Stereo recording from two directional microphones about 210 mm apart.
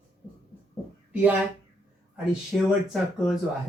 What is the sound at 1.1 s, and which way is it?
Speech, 10° right (ahead or behind).